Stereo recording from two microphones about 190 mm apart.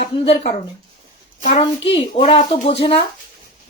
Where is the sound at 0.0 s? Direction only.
35° left (ahead or behind).